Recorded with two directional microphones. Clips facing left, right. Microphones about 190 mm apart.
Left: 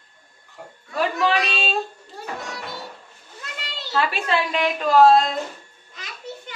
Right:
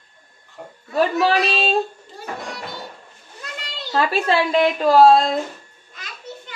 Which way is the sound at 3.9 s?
35° right (ahead or behind).